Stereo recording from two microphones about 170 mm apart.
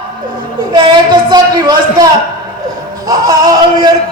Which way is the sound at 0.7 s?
25° right (ahead or behind).